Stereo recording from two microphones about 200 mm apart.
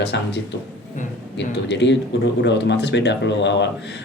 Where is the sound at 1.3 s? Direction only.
60° left (ahead or behind).